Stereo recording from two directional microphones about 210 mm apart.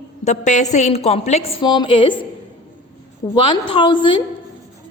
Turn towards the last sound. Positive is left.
turn(degrees=25)  # may be behind; listen again after turning